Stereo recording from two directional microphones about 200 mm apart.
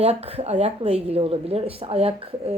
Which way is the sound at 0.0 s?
30° right (ahead or behind).